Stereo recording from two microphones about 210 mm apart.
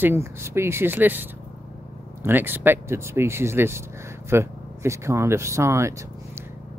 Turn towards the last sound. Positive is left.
turn(degrees=-15)  # may be behind; listen again after turning